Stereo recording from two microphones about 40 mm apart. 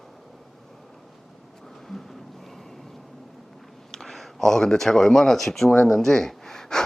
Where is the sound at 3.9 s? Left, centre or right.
Centre.